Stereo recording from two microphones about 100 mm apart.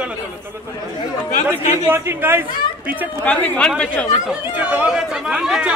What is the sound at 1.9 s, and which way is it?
A man's voice, 20° right (ahead or behind).